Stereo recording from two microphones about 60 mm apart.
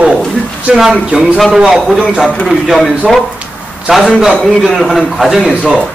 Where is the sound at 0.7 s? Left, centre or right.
Centre.